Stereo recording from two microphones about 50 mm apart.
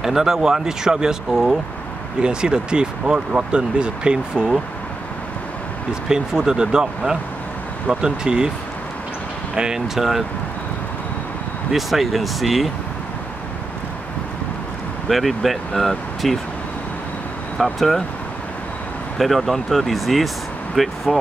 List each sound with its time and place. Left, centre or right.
0.0 s speech: centre
6.0 s speech: centre
9.6 s speech: centre
11.7 s speech: centre
15.0 s speech: centre
17.7 s speech: centre
19.1 s speech: centre